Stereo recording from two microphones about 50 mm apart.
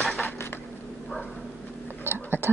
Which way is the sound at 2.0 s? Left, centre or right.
Right.